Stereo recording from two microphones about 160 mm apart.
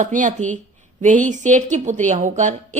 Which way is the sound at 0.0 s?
55° right (ahead or behind).